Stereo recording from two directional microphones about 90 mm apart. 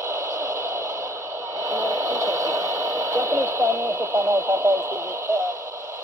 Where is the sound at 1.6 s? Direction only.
35° right (ahead or behind).